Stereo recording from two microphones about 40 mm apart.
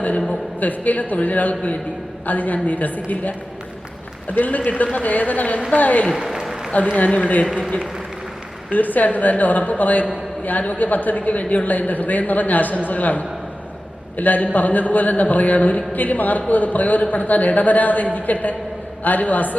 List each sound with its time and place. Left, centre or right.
0.3 s a woman's voice: left
6.2 s applause: centre
6.9 s speech: left
8.7 s a woman's voice: left